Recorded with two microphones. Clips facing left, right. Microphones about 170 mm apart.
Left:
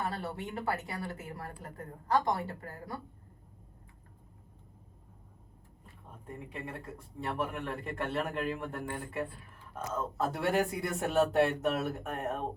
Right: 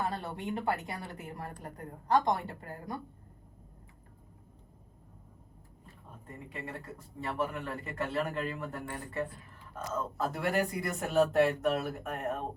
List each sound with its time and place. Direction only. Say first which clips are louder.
0.2 s a woman's voice: right 1 dB; 20° right (ahead or behind)
6.5 s a man's voice: right 1 dB; centre (ahead or behind)